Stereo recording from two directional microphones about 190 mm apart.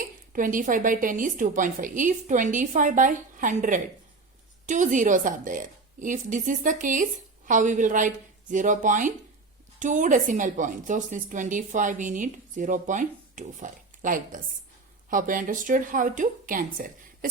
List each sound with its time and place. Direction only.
0.3 s a woman's voice: 45° right (ahead or behind)